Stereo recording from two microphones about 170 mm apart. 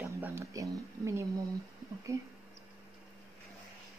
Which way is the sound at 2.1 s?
15° right (ahead or behind).